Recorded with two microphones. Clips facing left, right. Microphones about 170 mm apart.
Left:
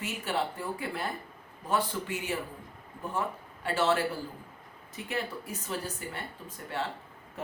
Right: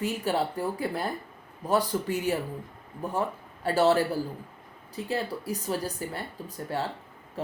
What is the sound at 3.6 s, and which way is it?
Speech, 35° right (ahead or behind).